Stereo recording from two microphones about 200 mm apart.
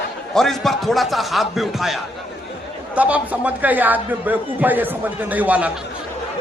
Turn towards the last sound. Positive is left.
turn(degrees=-5)  # may be behind; listen again after turning